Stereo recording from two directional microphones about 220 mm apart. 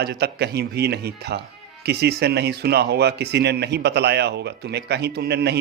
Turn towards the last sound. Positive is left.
turn(degrees=-45)  # may be behind; listen again after turning